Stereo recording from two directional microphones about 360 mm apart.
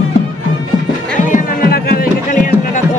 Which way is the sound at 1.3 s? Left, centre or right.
Left.